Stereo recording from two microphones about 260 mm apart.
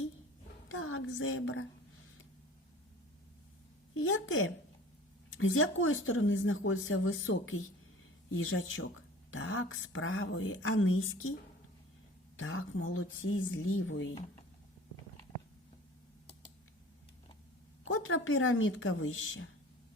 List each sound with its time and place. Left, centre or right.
0.7 s a woman's voice: left
3.9 s speech: left
12.4 s speech: left
17.8 s speech: left